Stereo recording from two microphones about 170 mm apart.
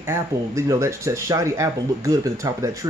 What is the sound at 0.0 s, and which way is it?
Speech, 15° right (ahead or behind).